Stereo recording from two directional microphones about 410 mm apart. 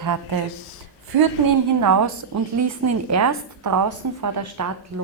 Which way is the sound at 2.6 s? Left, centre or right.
Right.